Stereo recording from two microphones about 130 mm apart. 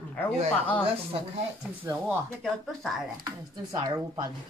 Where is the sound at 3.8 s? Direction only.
35° right (ahead or behind).